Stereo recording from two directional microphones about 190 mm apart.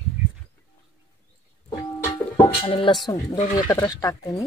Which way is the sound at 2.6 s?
25° left (ahead or behind).